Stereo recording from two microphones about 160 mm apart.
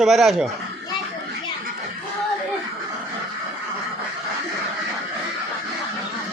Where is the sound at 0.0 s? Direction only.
Centre (ahead or behind).